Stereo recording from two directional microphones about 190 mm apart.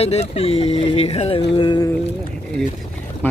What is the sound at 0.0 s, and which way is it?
Speech, 35° left (ahead or behind).